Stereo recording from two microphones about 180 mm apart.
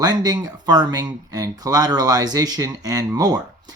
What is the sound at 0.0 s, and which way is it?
Speech, 20° right (ahead or behind).